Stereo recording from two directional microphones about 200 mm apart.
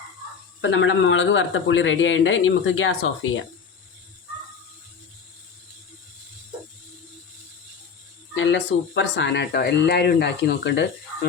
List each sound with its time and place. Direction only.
0.6 s a man's voice: 65° left (ahead or behind)
8.4 s speech: 65° left (ahead or behind)